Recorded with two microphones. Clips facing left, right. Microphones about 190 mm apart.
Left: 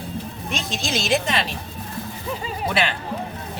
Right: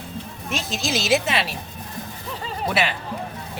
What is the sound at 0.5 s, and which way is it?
Speech, centre (ahead or behind).